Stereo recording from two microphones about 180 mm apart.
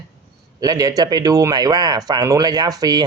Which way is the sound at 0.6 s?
20° right (ahead or behind).